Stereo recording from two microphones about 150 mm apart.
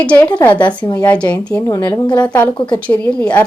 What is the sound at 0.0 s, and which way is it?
Speech, 10° left (ahead or behind).